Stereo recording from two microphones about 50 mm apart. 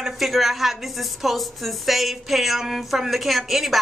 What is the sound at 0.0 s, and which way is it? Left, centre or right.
A woman's voice, centre.